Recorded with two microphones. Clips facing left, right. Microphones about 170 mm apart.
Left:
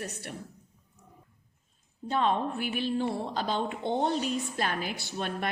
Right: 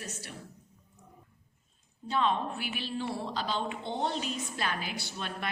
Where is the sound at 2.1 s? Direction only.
50° left (ahead or behind).